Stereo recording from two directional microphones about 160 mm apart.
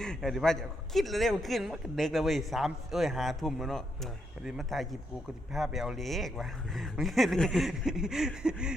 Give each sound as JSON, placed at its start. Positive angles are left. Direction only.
{"t": 0.0, "sound": "a man's voice", "side_deg": 0}